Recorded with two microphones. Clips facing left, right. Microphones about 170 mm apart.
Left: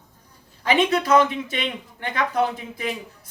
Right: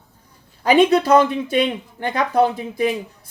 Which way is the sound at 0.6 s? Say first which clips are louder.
Right 6 dB; 35° right (ahead or behind).